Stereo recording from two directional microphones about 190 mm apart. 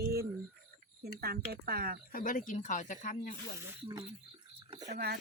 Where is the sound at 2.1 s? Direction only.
45° left (ahead or behind).